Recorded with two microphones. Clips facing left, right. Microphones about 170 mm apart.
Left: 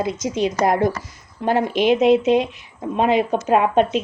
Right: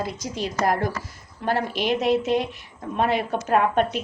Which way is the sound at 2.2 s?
20° left (ahead or behind).